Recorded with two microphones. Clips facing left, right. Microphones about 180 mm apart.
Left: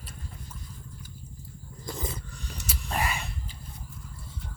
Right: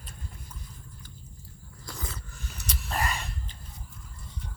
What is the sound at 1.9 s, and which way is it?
Roar, 20° left (ahead or behind).